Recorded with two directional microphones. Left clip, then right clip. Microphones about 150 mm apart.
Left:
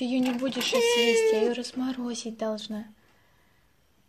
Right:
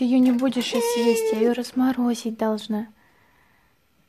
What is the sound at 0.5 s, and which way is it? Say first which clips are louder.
Speech: right 3 dB; 40° right (ahead or behind).